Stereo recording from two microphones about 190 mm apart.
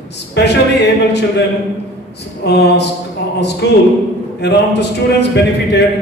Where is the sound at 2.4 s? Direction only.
60° left (ahead or behind).